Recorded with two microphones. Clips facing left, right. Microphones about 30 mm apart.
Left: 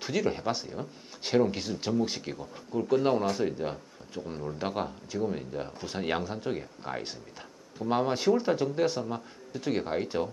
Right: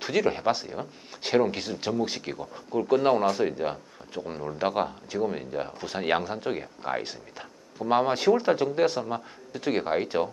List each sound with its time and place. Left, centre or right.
0.0 s speech: centre